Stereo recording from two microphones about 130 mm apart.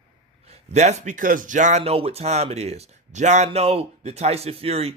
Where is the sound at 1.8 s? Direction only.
50° right (ahead or behind).